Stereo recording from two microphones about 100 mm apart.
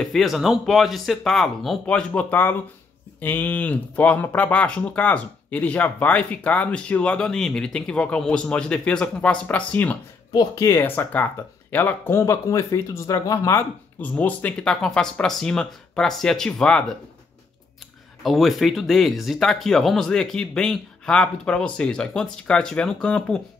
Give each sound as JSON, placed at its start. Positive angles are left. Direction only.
{"t": 0.0, "sound": "speech", "side_deg": 0}
{"t": 1.9, "sound": "speech", "side_deg": 10}
{"t": 10.3, "sound": "speech", "side_deg": 40}
{"t": 10.7, "sound": "speech", "side_deg": 25}
{"t": 14.0, "sound": "speech", "side_deg": 15}
{"t": 18.2, "sound": "speech", "side_deg": 0}